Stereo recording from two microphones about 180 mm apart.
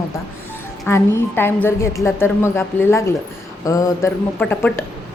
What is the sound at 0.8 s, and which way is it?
A woman's voice, 15° left (ahead or behind).